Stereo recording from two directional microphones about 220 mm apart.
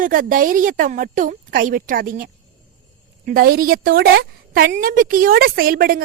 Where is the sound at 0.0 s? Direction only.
40° right (ahead or behind).